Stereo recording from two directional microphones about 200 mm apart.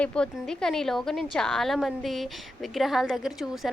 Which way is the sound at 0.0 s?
5° left (ahead or behind).